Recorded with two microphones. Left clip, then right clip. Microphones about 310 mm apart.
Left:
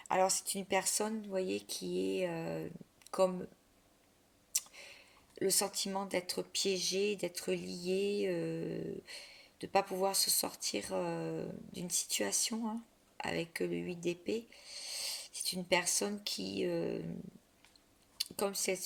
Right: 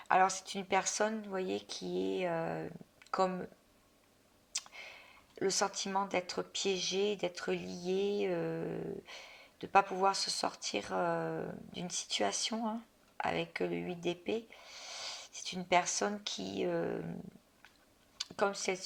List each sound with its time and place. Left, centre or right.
0.1 s speech: centre
0.9 s speech: left
4.5 s speech: left
18.3 s speech: left